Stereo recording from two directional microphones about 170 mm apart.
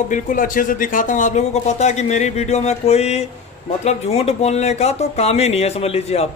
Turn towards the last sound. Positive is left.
turn(degrees=35)  # may be behind; listen again after turning